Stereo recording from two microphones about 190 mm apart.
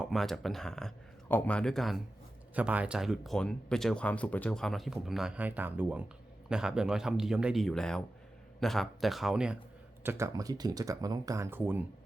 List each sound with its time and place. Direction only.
0.0 s speech: centre (ahead or behind)